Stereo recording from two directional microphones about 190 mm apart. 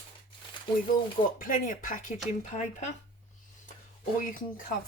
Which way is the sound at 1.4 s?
45° left (ahead or behind).